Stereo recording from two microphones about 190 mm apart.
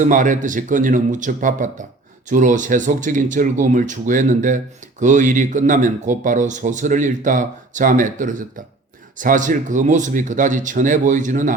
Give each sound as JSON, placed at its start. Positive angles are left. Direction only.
{"t": 0.0, "sound": "speech", "side_deg": -40}